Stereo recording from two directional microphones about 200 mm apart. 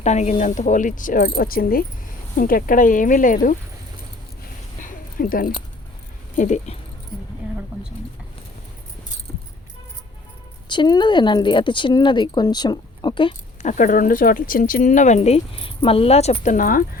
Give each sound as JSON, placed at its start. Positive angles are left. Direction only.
{"t": 0.0, "sound": "speech", "side_deg": 35}
{"t": 4.8, "sound": "a sound", "side_deg": 45}
{"t": 6.3, "sound": "speech", "side_deg": 40}
{"t": 9.3, "sound": "keys jangling", "side_deg": 10}
{"t": 10.7, "sound": "speech", "side_deg": 20}
{"t": 13.7, "sound": "speech", "side_deg": 40}